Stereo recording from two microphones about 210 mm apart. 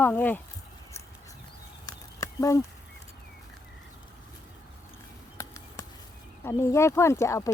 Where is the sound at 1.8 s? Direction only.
15° left (ahead or behind).